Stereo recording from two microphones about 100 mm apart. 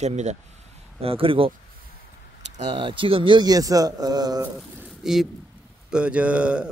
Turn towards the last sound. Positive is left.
turn(degrees=-10)  # may be behind; listen again after turning